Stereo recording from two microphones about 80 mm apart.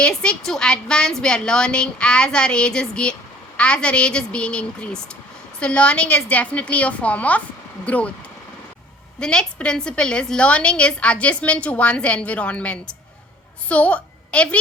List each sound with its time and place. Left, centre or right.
0.0 s a woman's voice: centre
9.2 s a woman's voice: centre